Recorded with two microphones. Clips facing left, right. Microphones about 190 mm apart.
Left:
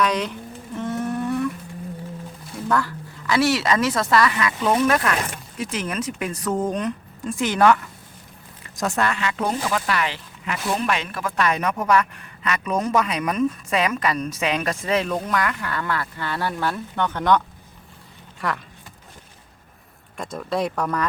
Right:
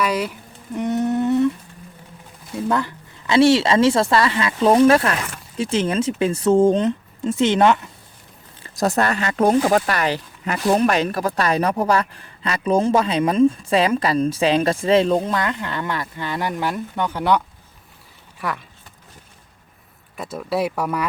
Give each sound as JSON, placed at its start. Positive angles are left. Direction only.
{"t": 0.0, "sound": "speech", "side_deg": -5}
{"t": 0.8, "sound": "humming", "side_deg": -20}
{"t": 2.6, "sound": "a woman's voice", "side_deg": -20}
{"t": 8.6, "sound": "speech", "side_deg": -35}
{"t": 20.1, "sound": "speech", "side_deg": -5}